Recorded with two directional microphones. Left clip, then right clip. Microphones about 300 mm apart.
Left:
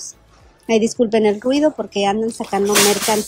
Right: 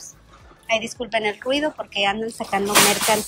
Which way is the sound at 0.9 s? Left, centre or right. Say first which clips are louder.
Left 8 dB; left.